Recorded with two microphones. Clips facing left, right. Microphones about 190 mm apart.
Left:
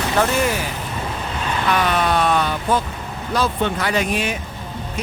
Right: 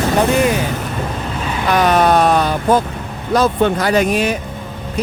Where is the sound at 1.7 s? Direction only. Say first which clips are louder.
Right 7 dB; 40° right (ahead or behind).